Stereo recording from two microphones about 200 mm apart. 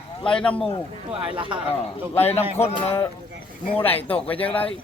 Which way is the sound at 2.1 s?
10° left (ahead or behind).